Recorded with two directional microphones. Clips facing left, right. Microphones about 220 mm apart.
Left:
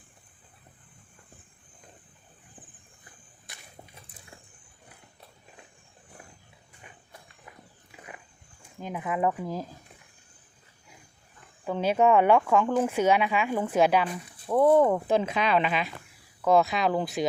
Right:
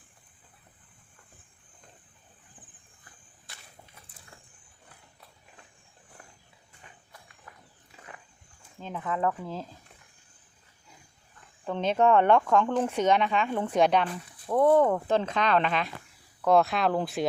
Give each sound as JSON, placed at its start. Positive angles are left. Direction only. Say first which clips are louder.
{"t": 3.5, "sound": "a sound", "louder": "left 2 dB", "side_deg": 20}
{"t": 8.8, "sound": "speech", "louder": "left 2 dB", "side_deg": 10}
{"t": 11.6, "sound": "speech", "louder": "left 1 dB", "side_deg": 10}